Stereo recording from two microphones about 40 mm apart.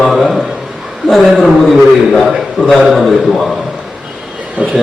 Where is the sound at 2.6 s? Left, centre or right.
Centre.